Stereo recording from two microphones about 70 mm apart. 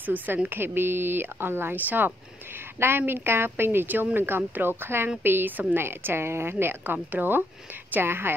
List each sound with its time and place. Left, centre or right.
0.0 s speech: right